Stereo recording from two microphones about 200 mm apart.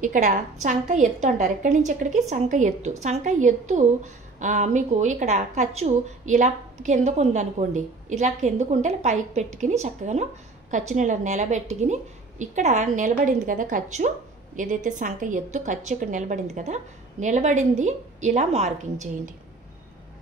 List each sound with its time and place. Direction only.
0.0 s a woman's voice: 40° right (ahead or behind)